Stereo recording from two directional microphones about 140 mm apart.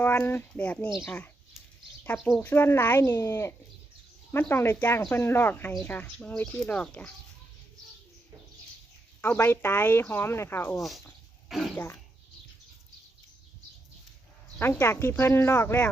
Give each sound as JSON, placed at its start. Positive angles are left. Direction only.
{"t": 0.0, "sound": "speech", "side_deg": 15}
{"t": 2.4, "sound": "speech", "side_deg": 15}
{"t": 9.2, "sound": "speech", "side_deg": 15}
{"t": 11.4, "sound": "speech", "side_deg": 0}
{"t": 14.6, "sound": "speech", "side_deg": 20}